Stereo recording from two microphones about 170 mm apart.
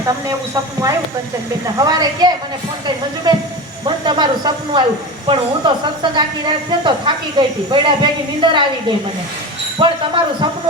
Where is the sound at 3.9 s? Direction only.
25° right (ahead or behind).